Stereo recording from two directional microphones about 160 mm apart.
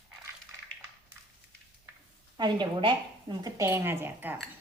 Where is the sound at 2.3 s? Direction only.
25° right (ahead or behind); by 4.3 s 10° right (ahead or behind).